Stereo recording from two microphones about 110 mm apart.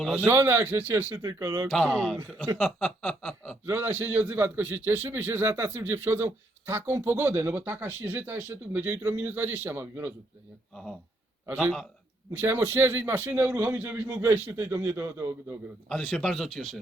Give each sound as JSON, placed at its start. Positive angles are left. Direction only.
{"t": 0.3, "sound": "speech", "side_deg": -20}
{"t": 1.2, "sound": "speech", "side_deg": -30}
{"t": 1.7, "sound": "speech", "side_deg": 5}
{"t": 2.6, "sound": "chuckle", "side_deg": 5}
{"t": 3.7, "sound": "a man's voice", "side_deg": -20}
{"t": 11.4, "sound": "a man's voice", "side_deg": -15}
{"t": 15.9, "sound": "speech", "side_deg": 5}